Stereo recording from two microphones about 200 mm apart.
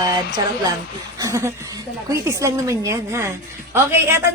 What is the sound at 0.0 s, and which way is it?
A woman's voice, 15° right (ahead or behind).